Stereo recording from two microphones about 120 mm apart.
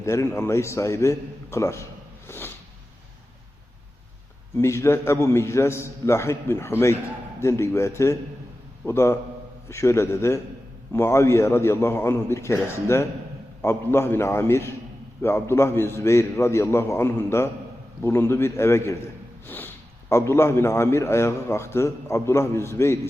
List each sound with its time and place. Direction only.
0.0 s a man's voice: 25° left (ahead or behind)
4.5 s a man's voice: 25° left (ahead or behind)